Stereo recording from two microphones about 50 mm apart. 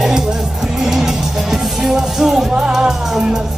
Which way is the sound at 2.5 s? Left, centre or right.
Right.